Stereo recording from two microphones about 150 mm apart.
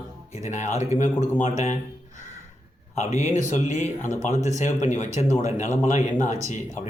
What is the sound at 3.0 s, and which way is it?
Speech, 45° left (ahead or behind).